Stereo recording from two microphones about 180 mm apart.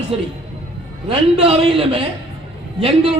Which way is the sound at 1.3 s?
35° right (ahead or behind).